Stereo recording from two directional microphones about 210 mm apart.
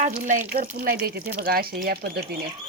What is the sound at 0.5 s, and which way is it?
Speech, 40° right (ahead or behind).